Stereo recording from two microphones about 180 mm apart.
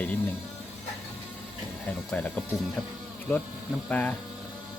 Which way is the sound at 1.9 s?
10° left (ahead or behind).